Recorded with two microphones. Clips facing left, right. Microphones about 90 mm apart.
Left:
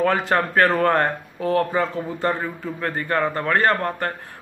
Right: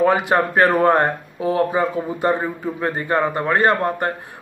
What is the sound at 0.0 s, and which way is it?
Speech, 10° right (ahead or behind).